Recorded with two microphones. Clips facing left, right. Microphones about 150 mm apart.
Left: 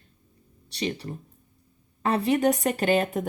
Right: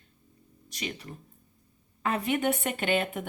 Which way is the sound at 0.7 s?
30° left (ahead or behind).